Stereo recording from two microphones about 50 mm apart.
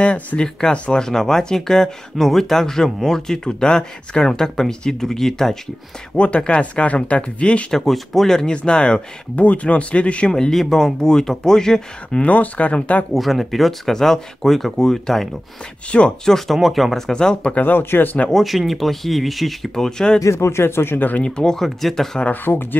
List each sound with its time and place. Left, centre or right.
0.0 s speech: left
6.1 s speech: left
7.7 s speech: centre; by 10.3 s left
10.3 s speech: centre
12.2 s speech: left
13.1 s speech: centre
15.9 s speech: left
16.3 s speech: centre
17.1 s speech: centre
17.6 s speech: left
18.3 s speech: centre
20.2 s speech: left
21.2 s speech: centre
22.3 s speech: left